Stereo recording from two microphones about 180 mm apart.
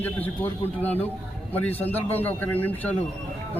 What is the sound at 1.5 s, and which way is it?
A man's voice, 10° left (ahead or behind).